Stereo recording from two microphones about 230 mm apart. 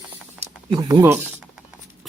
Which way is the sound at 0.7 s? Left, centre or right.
Centre.